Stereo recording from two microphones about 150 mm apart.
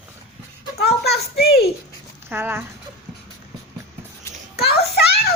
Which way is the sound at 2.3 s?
15° right (ahead or behind).